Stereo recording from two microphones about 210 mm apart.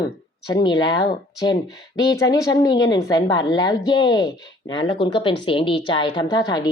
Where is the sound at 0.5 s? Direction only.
20° left (ahead or behind).